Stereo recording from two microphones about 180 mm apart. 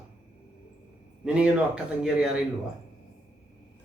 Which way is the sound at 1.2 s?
5° right (ahead or behind).